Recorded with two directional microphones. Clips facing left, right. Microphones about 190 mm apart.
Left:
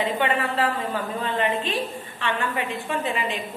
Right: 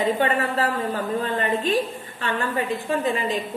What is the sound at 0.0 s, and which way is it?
A woman's voice, 40° right (ahead or behind).